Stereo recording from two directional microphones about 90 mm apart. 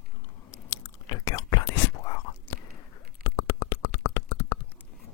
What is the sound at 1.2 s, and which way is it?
Whispering, 40° left (ahead or behind).